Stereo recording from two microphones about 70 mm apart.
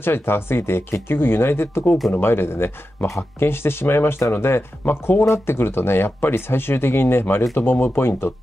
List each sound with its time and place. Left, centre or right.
0.0 s speech: left